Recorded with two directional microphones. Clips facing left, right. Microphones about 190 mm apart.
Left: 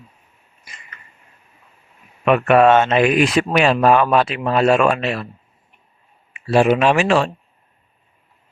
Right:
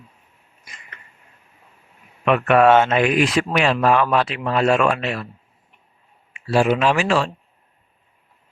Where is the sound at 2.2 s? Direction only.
15° left (ahead or behind).